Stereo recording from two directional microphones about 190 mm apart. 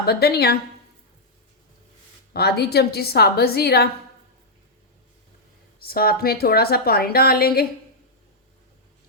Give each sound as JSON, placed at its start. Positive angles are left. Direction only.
{"t": 0.0, "sound": "a woman's voice", "side_deg": 55}
{"t": 2.3, "sound": "a woman's voice", "side_deg": 55}
{"t": 5.8, "sound": "a woman's voice", "side_deg": 50}